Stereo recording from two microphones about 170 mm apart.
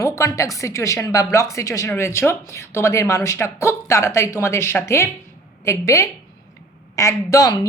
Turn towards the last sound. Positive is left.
turn(degrees=20)  # may be behind; listen again after turning